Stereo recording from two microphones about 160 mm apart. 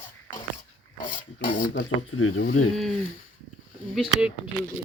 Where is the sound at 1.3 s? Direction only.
60° left (ahead or behind).